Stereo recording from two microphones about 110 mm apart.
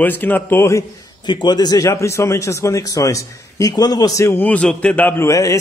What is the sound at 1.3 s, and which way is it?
Speech, 40° left (ahead or behind).